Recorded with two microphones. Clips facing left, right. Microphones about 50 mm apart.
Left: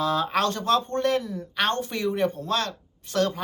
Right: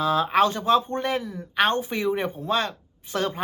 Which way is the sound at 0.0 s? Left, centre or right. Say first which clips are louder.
Right 3 dB; centre.